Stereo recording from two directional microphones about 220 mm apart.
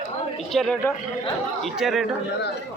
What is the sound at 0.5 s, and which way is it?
Speech, 5° left (ahead or behind).